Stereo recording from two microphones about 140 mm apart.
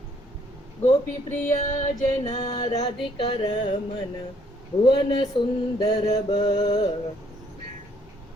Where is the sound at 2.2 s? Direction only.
30° left (ahead or behind).